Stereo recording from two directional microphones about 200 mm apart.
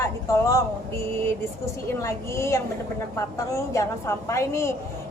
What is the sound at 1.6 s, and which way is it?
Speech, 15° left (ahead or behind).